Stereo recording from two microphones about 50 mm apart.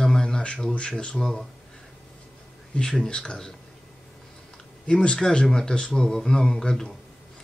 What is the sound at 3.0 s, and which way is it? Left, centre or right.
Speech, centre.